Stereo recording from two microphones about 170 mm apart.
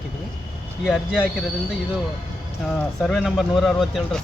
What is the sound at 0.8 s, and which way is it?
Speech, 5° right (ahead or behind).